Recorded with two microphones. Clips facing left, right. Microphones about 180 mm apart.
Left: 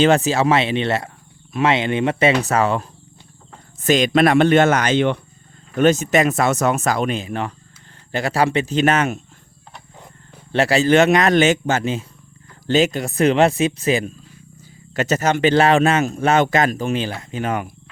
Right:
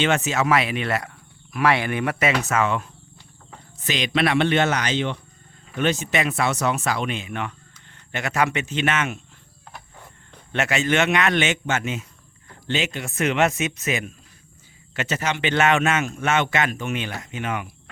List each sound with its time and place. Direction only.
0.0 s speech: 35° left (ahead or behind)
3.8 s speech: 45° left (ahead or behind)
5.7 s speech: 45° left (ahead or behind)
10.5 s speech: 35° left (ahead or behind)